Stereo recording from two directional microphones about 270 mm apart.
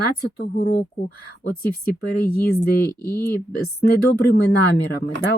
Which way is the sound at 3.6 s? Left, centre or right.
Left.